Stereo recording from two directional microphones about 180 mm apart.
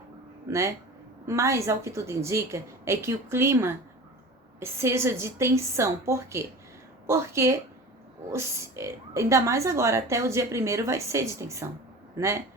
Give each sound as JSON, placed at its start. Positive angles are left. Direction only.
{"t": 0.5, "sound": "a man's voice", "side_deg": -15}